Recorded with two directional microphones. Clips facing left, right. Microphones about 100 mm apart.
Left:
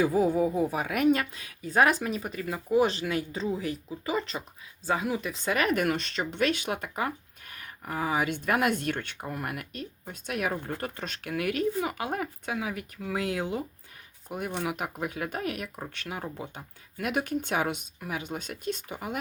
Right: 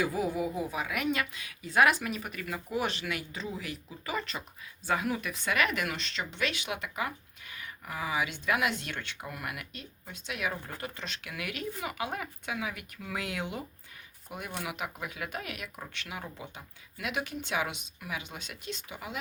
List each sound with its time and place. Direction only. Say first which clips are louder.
0.0 s speech: left 6 dB; 35° left (ahead or behind)
9.2 s speech: left 5 dB; 35° left (ahead or behind)